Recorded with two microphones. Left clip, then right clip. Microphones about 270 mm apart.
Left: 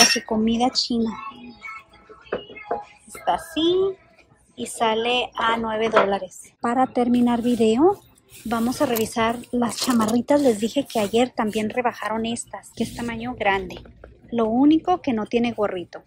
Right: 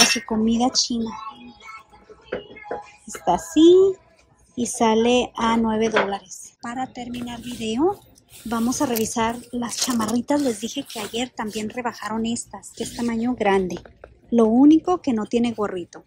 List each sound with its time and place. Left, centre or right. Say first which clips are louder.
0.1 s speech: even; centre
3.3 s a woman's voice: right 6 dB; centre
6.4 s a woman's voice: left 8 dB; centre